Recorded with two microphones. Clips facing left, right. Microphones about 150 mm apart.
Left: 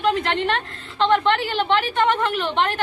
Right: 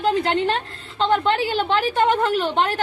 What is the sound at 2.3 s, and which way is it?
Speech, 40° right (ahead or behind).